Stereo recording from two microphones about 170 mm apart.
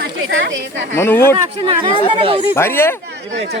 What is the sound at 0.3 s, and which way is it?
Speech, 90° right.